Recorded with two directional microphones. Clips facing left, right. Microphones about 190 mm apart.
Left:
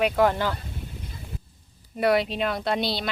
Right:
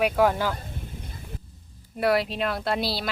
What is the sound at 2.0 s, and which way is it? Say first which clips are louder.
Speech: left 1 dB; centre (ahead or behind).